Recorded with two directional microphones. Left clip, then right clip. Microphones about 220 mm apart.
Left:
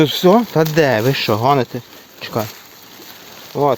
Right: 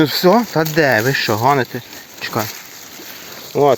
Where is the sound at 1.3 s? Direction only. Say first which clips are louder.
Left 1 dB; 15° left (ahead or behind).